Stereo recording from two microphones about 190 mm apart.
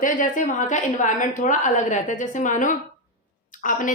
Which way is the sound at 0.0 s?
45° left (ahead or behind).